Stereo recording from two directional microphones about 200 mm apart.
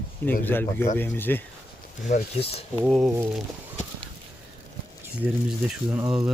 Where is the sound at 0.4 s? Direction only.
10° left (ahead or behind).